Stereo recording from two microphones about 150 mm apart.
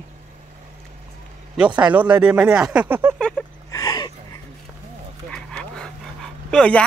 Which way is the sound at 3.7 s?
25° left (ahead or behind).